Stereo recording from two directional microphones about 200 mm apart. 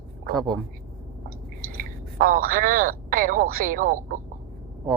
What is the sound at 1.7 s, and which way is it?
Speech, 45° right (ahead or behind).